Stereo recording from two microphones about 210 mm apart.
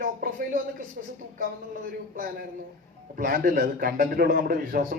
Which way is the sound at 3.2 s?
45° right (ahead or behind).